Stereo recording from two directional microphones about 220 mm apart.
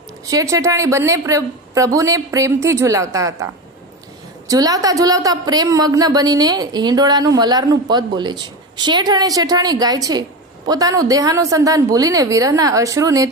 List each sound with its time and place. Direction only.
0.3 s a woman's voice: 15° right (ahead or behind)